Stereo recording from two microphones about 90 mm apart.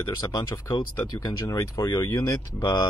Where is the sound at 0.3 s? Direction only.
45° left (ahead or behind).